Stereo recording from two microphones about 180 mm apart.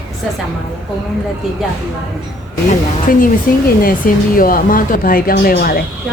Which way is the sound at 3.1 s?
50° left (ahead or behind).